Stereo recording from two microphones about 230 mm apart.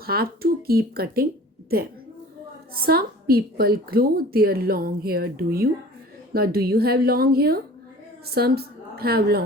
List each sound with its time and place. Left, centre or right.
0.0 s a woman's voice: right
2.8 s a woman's voice: right